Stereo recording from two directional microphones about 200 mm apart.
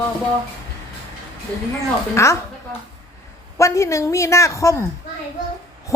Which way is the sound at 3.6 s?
15° left (ahead or behind).